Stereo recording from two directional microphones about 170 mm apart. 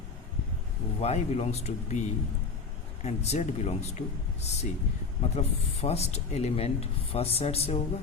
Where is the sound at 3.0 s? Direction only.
40° left (ahead or behind).